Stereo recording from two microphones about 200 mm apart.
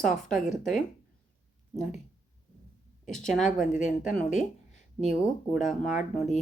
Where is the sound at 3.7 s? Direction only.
40° left (ahead or behind).